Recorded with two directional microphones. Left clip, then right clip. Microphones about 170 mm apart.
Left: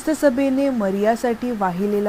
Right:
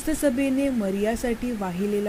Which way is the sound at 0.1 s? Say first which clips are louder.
Left 6 dB; 15° left (ahead or behind).